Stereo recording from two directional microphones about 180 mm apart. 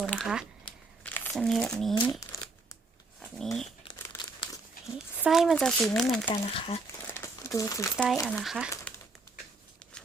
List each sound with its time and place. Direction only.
0.0 s speech: 5° left (ahead or behind)
3.2 s speech: centre (ahead or behind)
3.9 s crumpling: 15° left (ahead or behind)
4.9 s speech: 5° right (ahead or behind)
6.2 s speech: 30° left (ahead or behind)
7.1 s crumpling: 15° left (ahead or behind)
7.9 s speech: centre (ahead or behind)